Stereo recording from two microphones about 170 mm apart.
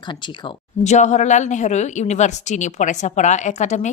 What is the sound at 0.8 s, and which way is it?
A woman's voice, 45° left (ahead or behind).